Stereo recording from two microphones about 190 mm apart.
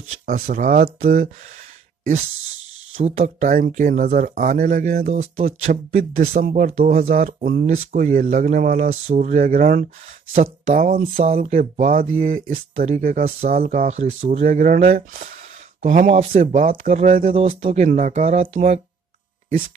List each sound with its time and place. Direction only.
0.1 s speech: 40° right (ahead or behind)
3.0 s speech: 35° right (ahead or behind)
3.4 s speech: 50° right (ahead or behind)
11.3 s speech: 35° right (ahead or behind)
11.9 s speech: 45° right (ahead or behind)
17.3 s speech: 30° right (ahead or behind)
17.6 s speech: 40° right (ahead or behind)